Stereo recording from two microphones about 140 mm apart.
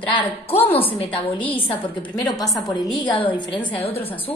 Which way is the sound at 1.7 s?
30° left (ahead or behind).